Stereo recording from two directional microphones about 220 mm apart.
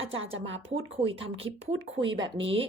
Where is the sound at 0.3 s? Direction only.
60° right (ahead or behind).